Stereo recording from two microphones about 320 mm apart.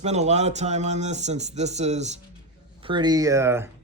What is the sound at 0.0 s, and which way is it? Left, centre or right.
Speech, right.